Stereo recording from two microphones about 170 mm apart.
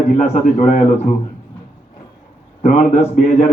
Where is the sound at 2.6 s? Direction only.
45° left (ahead or behind).